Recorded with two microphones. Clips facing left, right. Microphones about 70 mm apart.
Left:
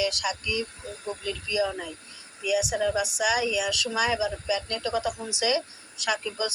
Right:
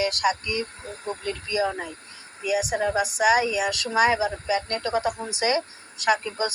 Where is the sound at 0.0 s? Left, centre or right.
Right.